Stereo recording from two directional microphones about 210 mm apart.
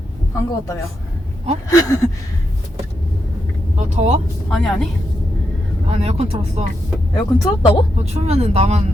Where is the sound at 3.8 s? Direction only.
30° right (ahead or behind).